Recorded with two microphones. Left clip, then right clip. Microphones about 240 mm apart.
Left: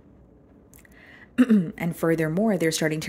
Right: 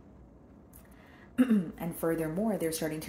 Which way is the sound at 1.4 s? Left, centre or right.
Left.